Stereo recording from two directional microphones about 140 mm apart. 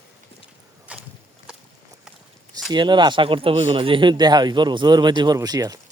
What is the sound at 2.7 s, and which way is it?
Speech, 35° right (ahead or behind).